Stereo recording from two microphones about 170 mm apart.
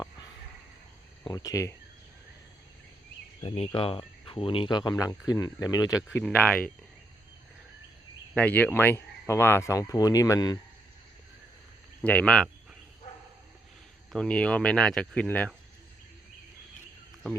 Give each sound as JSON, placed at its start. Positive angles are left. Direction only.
{"t": 1.3, "sound": "speech", "side_deg": 20}
{"t": 3.4, "sound": "speech", "side_deg": 35}
{"t": 6.2, "sound": "speech", "side_deg": 10}
{"t": 8.4, "sound": "speech", "side_deg": 10}
{"t": 12.0, "sound": "speech", "side_deg": 5}
{"t": 14.1, "sound": "speech", "side_deg": 5}